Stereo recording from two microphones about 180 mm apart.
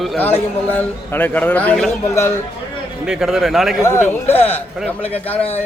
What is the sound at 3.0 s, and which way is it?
Speech, 5° right (ahead or behind).